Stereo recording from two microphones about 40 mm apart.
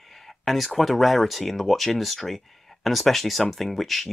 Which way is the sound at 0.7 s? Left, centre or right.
Centre.